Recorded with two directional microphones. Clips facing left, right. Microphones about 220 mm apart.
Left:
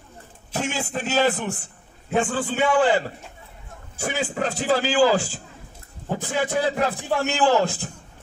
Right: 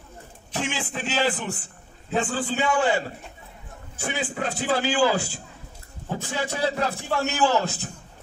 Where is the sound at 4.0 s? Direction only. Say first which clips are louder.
Left 3 dB; 45° left (ahead or behind).